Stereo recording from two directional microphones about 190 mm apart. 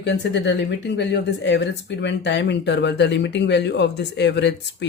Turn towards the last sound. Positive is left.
turn(degrees=65)  # may be behind; listen again after turning